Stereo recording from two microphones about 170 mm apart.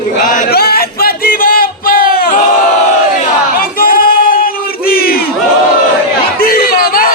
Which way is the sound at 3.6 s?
60° left (ahead or behind).